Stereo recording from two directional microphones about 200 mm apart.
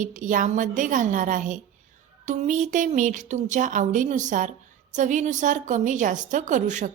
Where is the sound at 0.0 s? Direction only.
40° right (ahead or behind).